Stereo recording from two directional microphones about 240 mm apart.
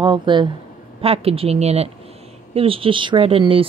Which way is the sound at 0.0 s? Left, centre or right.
Centre.